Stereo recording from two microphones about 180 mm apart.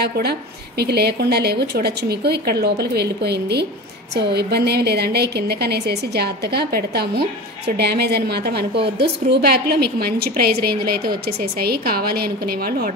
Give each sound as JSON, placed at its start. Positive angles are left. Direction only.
{"t": 0.0, "sound": "a woman's voice", "side_deg": -65}